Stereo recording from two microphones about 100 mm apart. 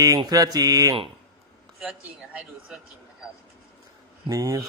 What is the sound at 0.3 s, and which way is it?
Mantra, 40° right (ahead or behind).